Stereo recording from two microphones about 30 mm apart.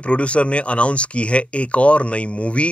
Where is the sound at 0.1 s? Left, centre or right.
Left.